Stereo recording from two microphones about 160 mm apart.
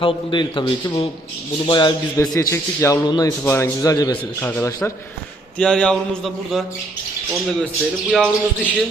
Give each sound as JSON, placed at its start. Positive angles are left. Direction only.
{"t": 0.0, "sound": "a man's voice", "side_deg": 30}
{"t": 4.4, "sound": "a man's voice", "side_deg": 15}
{"t": 5.5, "sound": "mantra", "side_deg": 5}
{"t": 8.1, "sound": "mantra", "side_deg": 5}